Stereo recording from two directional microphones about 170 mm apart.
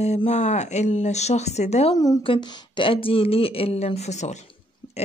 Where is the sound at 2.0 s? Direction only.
25° left (ahead or behind).